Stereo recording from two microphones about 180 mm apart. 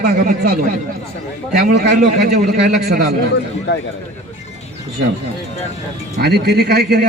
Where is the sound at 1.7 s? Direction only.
65° right (ahead or behind).